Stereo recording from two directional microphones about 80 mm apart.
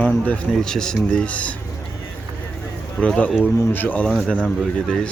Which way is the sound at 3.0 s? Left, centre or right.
Centre.